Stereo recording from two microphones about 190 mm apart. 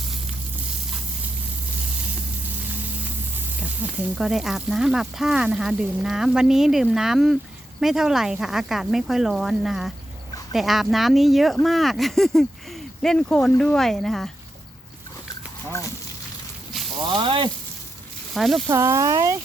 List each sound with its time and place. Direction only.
3.6 s speech: 5° right (ahead or behind)
17.0 s speech: 25° right (ahead or behind)
18.3 s speech: centre (ahead or behind)
18.7 s speech: 15° right (ahead or behind)